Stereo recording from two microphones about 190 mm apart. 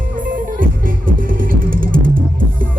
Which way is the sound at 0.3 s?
45° right (ahead or behind).